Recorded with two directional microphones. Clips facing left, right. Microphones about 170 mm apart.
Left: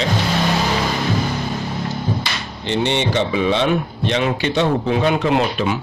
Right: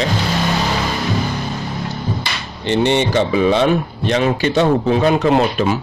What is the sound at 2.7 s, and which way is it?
Speech, 45° right (ahead or behind).